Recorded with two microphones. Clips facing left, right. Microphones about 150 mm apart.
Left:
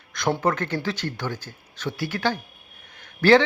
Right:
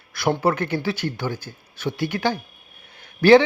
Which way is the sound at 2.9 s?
10° right (ahead or behind).